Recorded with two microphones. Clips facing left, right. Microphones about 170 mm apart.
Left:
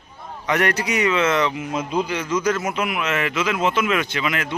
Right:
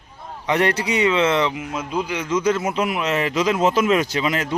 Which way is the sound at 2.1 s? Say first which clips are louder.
Right 1 dB; 20° right (ahead or behind).